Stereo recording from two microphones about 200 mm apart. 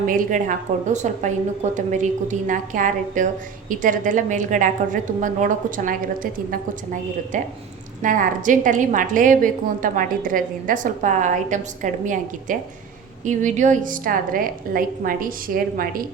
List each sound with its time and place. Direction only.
0.0 s a woman's voice: 40° right (ahead or behind)